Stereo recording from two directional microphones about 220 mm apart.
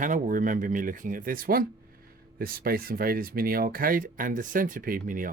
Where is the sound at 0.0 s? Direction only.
40° right (ahead or behind).